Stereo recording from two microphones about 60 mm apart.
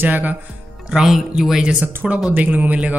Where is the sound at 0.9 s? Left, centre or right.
Centre.